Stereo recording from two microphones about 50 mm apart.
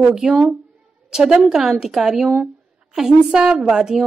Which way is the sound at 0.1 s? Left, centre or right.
Centre.